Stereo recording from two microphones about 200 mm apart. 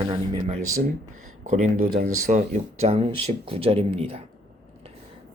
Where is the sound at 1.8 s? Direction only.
50° right (ahead or behind).